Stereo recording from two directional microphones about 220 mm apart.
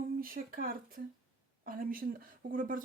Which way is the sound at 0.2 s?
40° right (ahead or behind).